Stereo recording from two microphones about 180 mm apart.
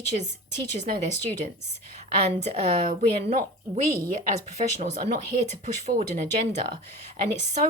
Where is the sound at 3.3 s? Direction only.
40° right (ahead or behind).